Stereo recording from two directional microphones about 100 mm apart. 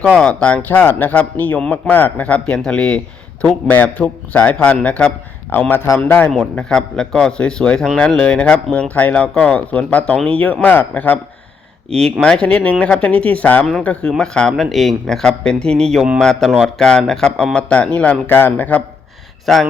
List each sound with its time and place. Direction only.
0.2 s speech: 10° left (ahead or behind)
6.3 s speech: 5° left (ahead or behind)
12.2 s speech: 10° left (ahead or behind)
19.5 s speech: centre (ahead or behind)